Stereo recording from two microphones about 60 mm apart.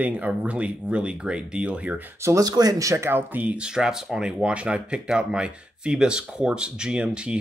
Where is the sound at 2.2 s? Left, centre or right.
Right.